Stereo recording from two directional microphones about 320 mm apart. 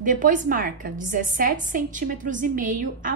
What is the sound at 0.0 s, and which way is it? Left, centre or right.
A woman's voice, right.